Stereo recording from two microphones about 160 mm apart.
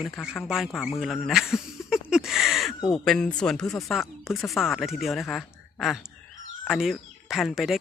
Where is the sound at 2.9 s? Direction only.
5° left (ahead or behind).